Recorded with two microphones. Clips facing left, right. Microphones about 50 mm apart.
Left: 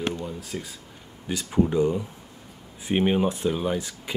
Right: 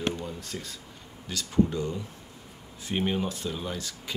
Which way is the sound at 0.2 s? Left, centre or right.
Centre.